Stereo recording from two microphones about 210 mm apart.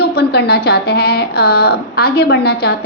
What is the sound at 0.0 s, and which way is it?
A woman's voice, 50° left (ahead or behind).